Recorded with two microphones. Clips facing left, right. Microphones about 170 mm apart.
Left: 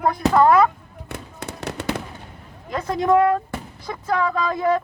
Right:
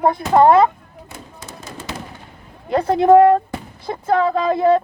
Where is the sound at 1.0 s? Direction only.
65° left (ahead or behind).